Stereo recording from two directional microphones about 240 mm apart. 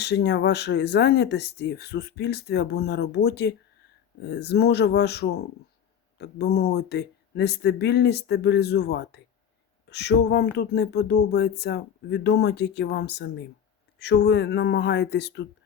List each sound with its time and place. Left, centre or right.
0.0 s speech: left